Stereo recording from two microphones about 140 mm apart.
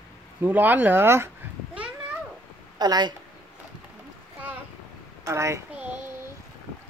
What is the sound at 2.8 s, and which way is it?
Speech, 30° right (ahead or behind).